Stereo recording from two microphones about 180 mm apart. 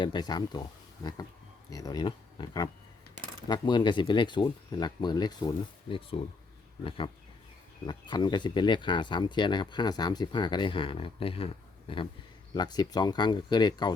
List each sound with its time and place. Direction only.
0.0 s speech: 25° left (ahead or behind)